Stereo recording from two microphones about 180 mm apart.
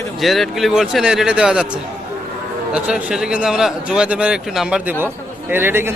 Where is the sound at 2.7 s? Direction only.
5° right (ahead or behind).